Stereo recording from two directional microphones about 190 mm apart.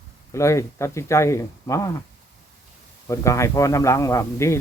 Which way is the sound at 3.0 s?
15° left (ahead or behind).